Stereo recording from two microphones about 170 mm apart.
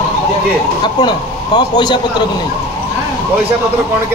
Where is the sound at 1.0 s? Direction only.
25° left (ahead or behind).